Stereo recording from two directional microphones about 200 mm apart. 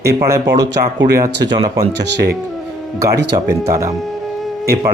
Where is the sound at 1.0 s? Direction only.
15° right (ahead or behind).